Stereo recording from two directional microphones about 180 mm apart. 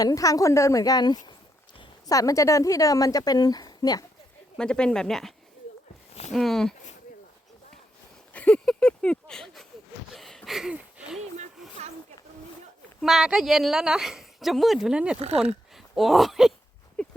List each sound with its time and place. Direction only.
0.0 s speech: 20° left (ahead or behind)
4.5 s speech: 5° left (ahead or behind)
6.3 s speech: centre (ahead or behind)
8.3 s speech: 5° left (ahead or behind)
10.1 s a sound: centre (ahead or behind)
13.0 s speech: centre (ahead or behind)
17.0 s horse: 5° left (ahead or behind)